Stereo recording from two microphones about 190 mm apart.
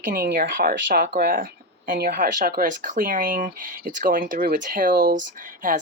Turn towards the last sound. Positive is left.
turn(degrees=-40)  # may be behind; listen again after turning